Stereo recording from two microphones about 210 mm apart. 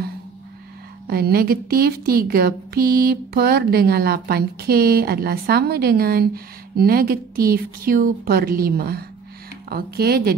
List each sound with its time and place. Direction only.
1.0 s a woman's voice: 45° right (ahead or behind)